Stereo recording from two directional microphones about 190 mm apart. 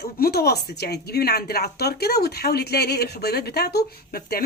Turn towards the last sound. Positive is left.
turn(degrees=55)  # may be behind; listen again after turning